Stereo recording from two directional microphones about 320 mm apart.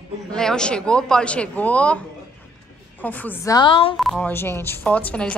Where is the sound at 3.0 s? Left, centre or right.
Centre.